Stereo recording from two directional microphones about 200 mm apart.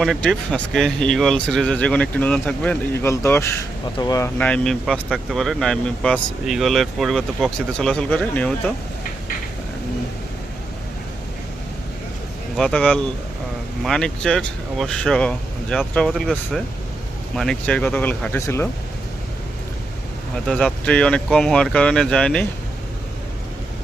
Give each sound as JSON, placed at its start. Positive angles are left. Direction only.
{"t": 0.0, "sound": "speech", "side_deg": 0}
{"t": 4.4, "sound": "speech", "side_deg": 5}
{"t": 12.5, "sound": "speech", "side_deg": 5}
{"t": 20.5, "sound": "speech", "side_deg": 5}